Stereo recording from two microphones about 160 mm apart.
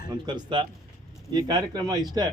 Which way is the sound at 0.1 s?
30° right (ahead or behind).